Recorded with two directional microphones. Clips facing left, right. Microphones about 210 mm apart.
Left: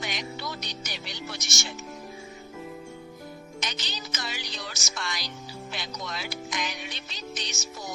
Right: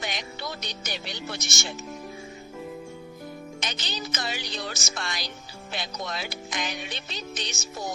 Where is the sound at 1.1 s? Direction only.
55° right (ahead or behind).